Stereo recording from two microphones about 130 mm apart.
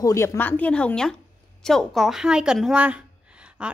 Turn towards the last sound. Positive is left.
turn(degrees=-10)  # may be behind; listen again after turning